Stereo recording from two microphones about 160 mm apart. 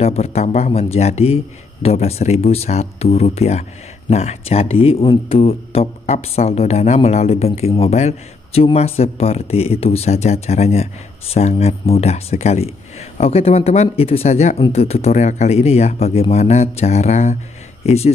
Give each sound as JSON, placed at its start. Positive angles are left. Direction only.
{"t": 0.0, "sound": "speech", "side_deg": 40}